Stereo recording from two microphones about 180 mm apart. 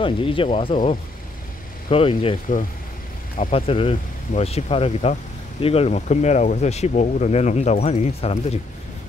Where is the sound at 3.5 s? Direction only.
30° left (ahead or behind).